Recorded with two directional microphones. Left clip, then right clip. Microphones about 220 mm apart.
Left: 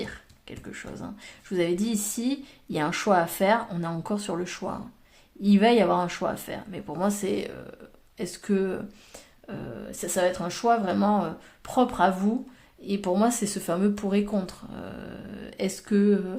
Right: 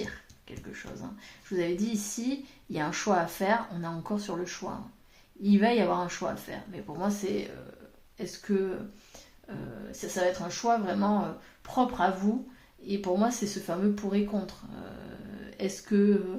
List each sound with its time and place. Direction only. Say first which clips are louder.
1.5 s speech: left 4 dB; 40° left (ahead or behind)
10.0 s speech: left 4 dB; 45° left (ahead or behind)